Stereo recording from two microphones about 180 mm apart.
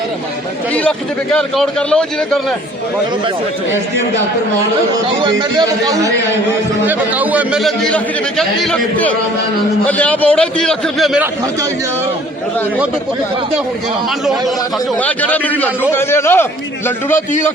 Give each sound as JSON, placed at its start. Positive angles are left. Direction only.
{"t": 0.7, "sound": "a man's voice", "side_deg": 5}
{"t": 5.2, "sound": "a man's voice", "side_deg": -25}
{"t": 6.8, "sound": "a man's voice", "side_deg": -10}
{"t": 14.9, "sound": "a man's voice", "side_deg": 10}
{"t": 17.2, "sound": "a man's voice", "side_deg": 45}